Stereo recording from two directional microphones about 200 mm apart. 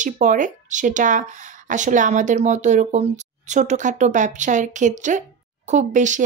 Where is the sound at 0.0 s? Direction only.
40° right (ahead or behind).